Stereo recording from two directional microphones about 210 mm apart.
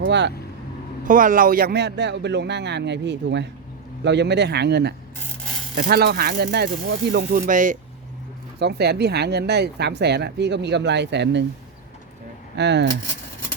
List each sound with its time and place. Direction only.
0.0 s speech: 55° right (ahead or behind)
1.0 s a man's voice: 40° right (ahead or behind)
7.3 s speech: 40° right (ahead or behind)
8.5 s speech: 50° right (ahead or behind)
12.5 s a man's voice: 55° right (ahead or behind)